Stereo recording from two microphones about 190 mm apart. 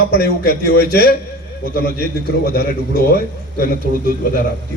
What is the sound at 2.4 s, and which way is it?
Speech, 50° left (ahead or behind).